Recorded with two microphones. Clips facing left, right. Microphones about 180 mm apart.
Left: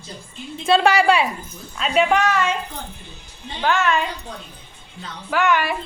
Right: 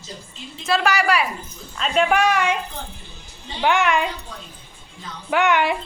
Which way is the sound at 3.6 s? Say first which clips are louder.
Right 1 dB; 15° right (ahead or behind).